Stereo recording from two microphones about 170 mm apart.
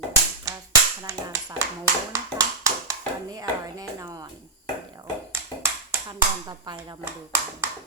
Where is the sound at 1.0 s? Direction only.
15° right (ahead or behind).